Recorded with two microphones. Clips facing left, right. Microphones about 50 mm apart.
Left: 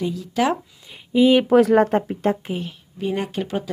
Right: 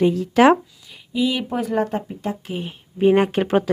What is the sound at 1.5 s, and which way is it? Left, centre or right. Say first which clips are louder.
Speech: left 10 dB; left.